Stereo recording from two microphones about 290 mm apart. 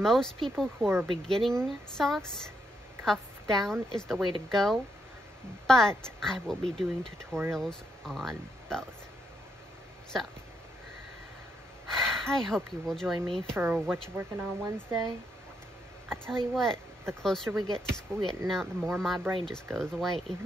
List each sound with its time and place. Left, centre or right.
0.0 s a woman's voice: centre
1.2 s a woman's voice: centre
12.0 s speech: centre
16.1 s a woman's voice: centre
16.7 s a sound: centre
17.2 s a woman's voice: centre